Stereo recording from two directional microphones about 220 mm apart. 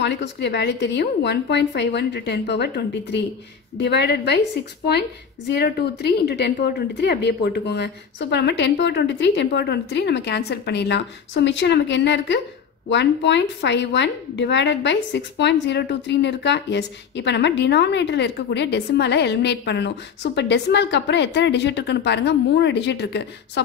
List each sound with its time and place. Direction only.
0.0 s a woman's voice: 55° left (ahead or behind)
5.5 s a woman's voice: 50° left (ahead or behind)